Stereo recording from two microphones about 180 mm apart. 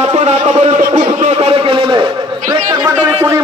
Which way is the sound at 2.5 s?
20° right (ahead or behind).